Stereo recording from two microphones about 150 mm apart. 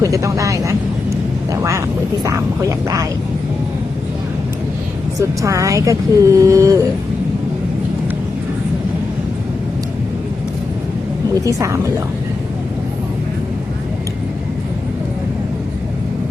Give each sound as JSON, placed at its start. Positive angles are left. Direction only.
{"t": 0.0, "sound": "a woman's voice", "side_deg": -20}
{"t": 5.4, "sound": "a woman's voice", "side_deg": -20}
{"t": 11.3, "sound": "a woman's voice", "side_deg": -20}